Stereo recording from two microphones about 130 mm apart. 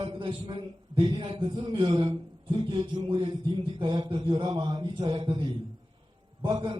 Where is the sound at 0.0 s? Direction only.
40° right (ahead or behind).